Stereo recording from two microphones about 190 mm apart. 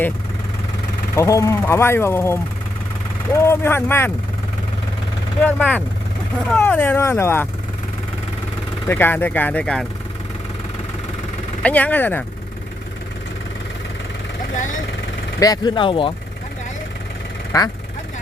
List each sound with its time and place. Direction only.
1.1 s speech: 15° left (ahead or behind)
5.4 s speech: 10° left (ahead or behind)
8.9 s speech: 10° left (ahead or behind)
11.6 s speech: 10° left (ahead or behind)
15.4 s speech: 20° left (ahead or behind)
17.5 s speech: 20° left (ahead or behind)